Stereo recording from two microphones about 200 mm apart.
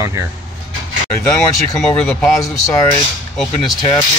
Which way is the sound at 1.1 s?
25° left (ahead or behind).